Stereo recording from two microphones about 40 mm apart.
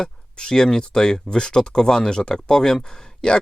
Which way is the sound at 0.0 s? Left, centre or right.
Centre.